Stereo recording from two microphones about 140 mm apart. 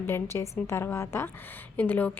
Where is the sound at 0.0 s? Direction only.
15° left (ahead or behind).